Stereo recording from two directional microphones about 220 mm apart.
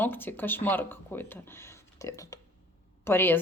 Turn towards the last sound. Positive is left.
turn(degrees=10)  # may be behind; listen again after turning